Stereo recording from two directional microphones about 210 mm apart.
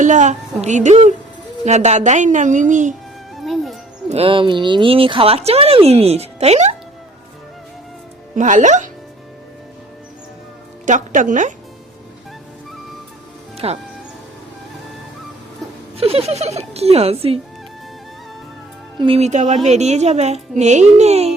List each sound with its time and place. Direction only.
0.0 s a child's voice: 35° right (ahead or behind)
3.3 s music: centre (ahead or behind)
4.1 s speech: 25° right (ahead or behind)
8.4 s a child's voice: 35° right (ahead or behind)
10.8 s a child's voice: 35° right (ahead or behind)
13.6 s speech: 25° right (ahead or behind)
16.0 s speech: 30° right (ahead or behind)
18.9 s a child's voice: 25° right (ahead or behind)